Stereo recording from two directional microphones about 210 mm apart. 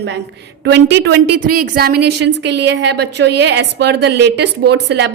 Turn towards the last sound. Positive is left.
turn(degrees=-55)  # may be behind; listen again after turning